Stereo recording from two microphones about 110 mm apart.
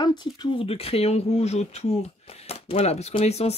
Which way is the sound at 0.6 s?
60° left (ahead or behind).